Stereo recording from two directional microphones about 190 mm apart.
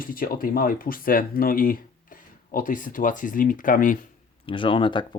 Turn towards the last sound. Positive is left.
turn(degrees=25)  # may be behind; listen again after turning